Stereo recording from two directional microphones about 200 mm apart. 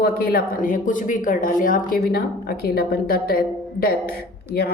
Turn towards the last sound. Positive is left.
turn(degrees=50)  # may be behind; listen again after turning